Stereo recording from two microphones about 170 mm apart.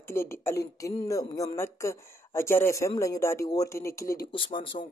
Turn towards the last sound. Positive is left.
turn(degrees=30)  # may be behind; listen again after turning